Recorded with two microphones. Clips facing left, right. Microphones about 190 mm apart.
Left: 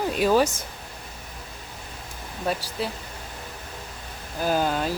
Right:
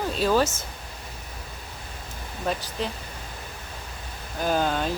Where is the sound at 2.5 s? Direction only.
5° left (ahead or behind).